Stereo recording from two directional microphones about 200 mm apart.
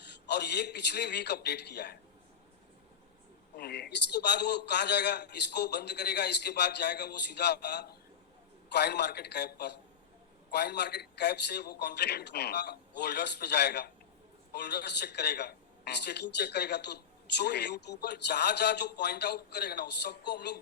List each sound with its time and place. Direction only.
0.0 s a woman's voice: 55° left (ahead or behind)
3.6 s a woman's voice: 55° left (ahead or behind)